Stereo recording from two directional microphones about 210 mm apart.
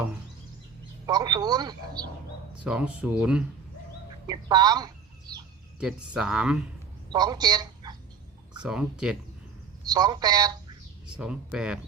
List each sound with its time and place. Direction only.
1.0 s speech: 20° right (ahead or behind)
2.6 s speech: 5° right (ahead or behind)
4.3 s speech: 20° right (ahead or behind)
5.8 s speech: 5° right (ahead or behind)
7.1 s speech: 20° right (ahead or behind)
8.6 s speech: 5° right (ahead or behind)
9.8 s speech: 20° right (ahead or behind)
11.0 s speech: 5° right (ahead or behind)